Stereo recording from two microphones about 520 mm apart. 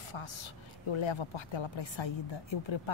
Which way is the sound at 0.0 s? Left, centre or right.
Left.